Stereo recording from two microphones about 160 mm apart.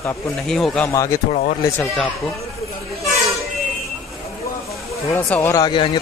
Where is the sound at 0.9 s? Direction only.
20° left (ahead or behind).